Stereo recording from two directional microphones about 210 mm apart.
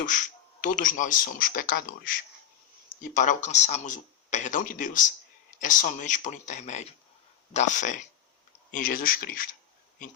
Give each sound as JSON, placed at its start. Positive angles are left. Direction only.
{"t": 0.0, "sound": "speech", "side_deg": 35}